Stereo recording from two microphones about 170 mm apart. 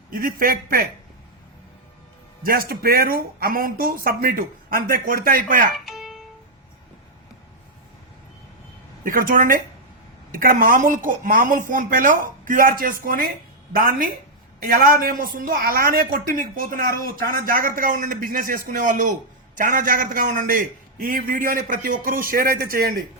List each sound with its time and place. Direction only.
0.1 s speech: 55° right (ahead or behind)
2.4 s speech: 60° right (ahead or behind)
5.7 s music: centre (ahead or behind)
9.0 s speech: 55° right (ahead or behind)